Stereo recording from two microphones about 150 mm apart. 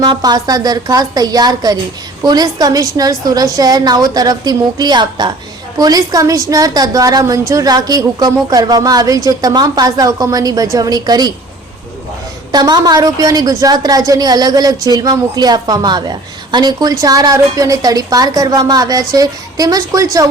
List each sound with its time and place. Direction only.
0.0 s a woman's voice: 25° right (ahead or behind)
12.5 s a woman's voice: 25° right (ahead or behind)